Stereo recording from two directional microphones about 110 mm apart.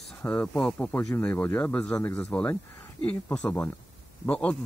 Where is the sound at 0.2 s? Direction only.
10° left (ahead or behind).